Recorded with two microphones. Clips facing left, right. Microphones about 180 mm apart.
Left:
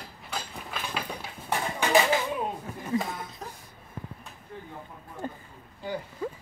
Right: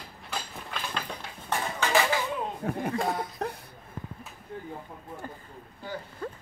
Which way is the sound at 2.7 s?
60° right (ahead or behind).